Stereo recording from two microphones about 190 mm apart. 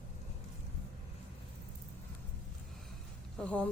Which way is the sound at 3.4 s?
5° left (ahead or behind).